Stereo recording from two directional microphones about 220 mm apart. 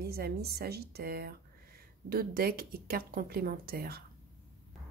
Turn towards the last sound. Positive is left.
turn(degrees=-45)  # may be behind; listen again after turning